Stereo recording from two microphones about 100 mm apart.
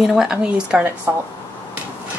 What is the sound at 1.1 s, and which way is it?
Dishes, 25° right (ahead or behind).